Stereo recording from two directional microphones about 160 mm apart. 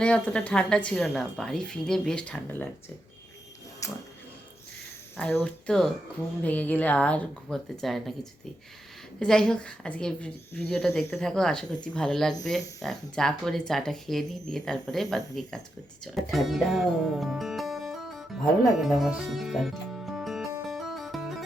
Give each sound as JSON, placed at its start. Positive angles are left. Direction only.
{"t": 0.0, "sound": "a woman's voice", "side_deg": 5}
{"t": 3.8, "sound": "dog", "side_deg": 20}
{"t": 5.1, "sound": "a woman's voice", "side_deg": 10}
{"t": 20.7, "sound": "music", "side_deg": 0}